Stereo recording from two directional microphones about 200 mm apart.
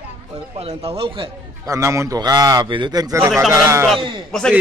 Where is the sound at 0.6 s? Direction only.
30° right (ahead or behind); by 3.8 s 15° right (ahead or behind).